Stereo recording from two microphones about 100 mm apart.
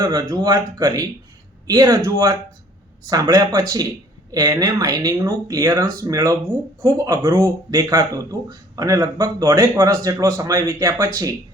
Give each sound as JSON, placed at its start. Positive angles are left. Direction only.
{"t": 0.0, "sound": "speech", "side_deg": -40}